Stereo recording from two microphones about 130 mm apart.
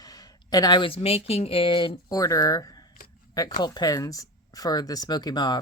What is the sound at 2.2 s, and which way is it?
Speech, 25° left (ahead or behind).